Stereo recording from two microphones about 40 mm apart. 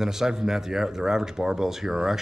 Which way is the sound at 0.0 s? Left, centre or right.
Centre.